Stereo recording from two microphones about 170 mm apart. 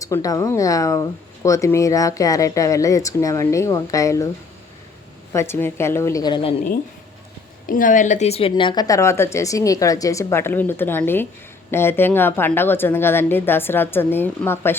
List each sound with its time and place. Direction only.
0.0 s speech: 20° left (ahead or behind)
5.3 s a woman's voice: 15° left (ahead or behind)
7.7 s a woman's voice: 50° left (ahead or behind); by 14.8 s 15° left (ahead or behind)